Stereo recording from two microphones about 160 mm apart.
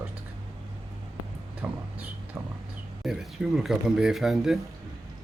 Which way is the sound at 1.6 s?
5° right (ahead or behind).